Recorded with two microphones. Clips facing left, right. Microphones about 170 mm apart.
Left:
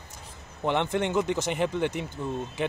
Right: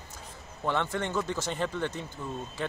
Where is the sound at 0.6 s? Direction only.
20° left (ahead or behind).